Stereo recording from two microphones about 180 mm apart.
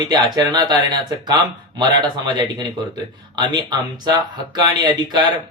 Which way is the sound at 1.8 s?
25° right (ahead or behind).